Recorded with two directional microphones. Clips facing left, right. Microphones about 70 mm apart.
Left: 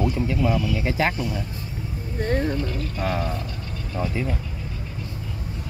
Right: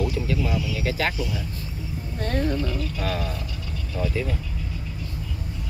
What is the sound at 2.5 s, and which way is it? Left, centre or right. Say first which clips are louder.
Speech: even; left.